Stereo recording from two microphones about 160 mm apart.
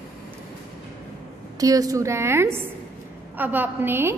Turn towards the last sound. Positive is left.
turn(degrees=-15)  # may be behind; listen again after turning